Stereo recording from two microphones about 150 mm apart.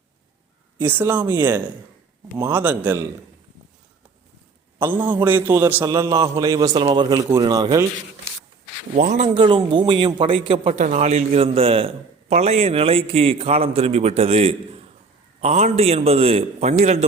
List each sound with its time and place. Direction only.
0.8 s a man's voice: 15° right (ahead or behind)
4.8 s a man's voice: 15° right (ahead or behind)
5.8 s a man's voice: 25° right (ahead or behind)
6.7 s a man's voice: 35° right (ahead or behind)
9.0 s a man's voice: 55° right (ahead or behind)
9.3 s a man's voice: 30° right (ahead or behind)
10.8 s a man's voice: 50° right (ahead or behind)